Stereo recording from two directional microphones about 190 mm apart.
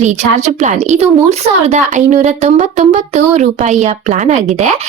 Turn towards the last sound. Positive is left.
turn(degrees=-35)  # may be behind; listen again after turning